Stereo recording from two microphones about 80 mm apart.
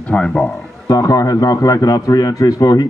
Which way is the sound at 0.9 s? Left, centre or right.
Left.